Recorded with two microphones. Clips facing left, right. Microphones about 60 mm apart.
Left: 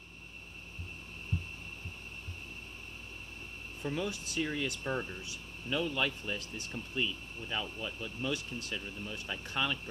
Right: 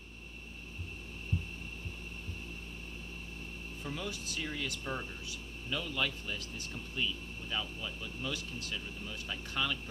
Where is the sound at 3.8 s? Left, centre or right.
Centre.